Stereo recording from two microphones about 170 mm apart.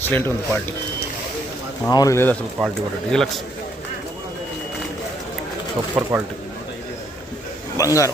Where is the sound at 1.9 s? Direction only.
20° left (ahead or behind); by 3.4 s 5° left (ahead or behind).